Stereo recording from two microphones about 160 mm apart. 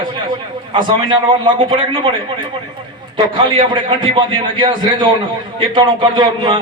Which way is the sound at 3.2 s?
30° right (ahead or behind).